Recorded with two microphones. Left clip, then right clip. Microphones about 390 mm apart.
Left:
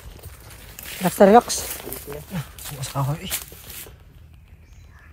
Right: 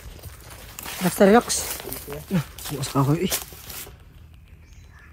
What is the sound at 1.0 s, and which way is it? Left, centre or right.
Speech, centre.